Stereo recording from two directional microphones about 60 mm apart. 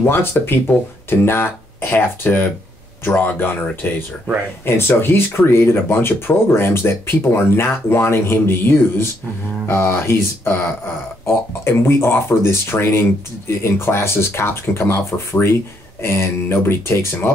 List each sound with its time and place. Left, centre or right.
0.0 s speech: left